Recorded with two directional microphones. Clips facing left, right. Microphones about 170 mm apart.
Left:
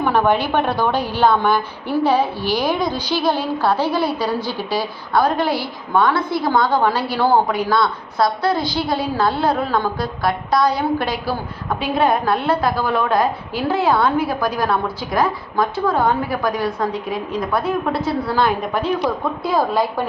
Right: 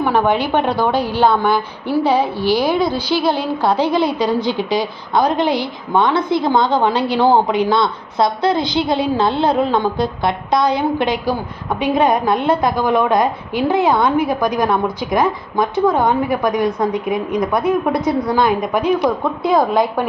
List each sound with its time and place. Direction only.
0.0 s a woman's voice: 15° right (ahead or behind)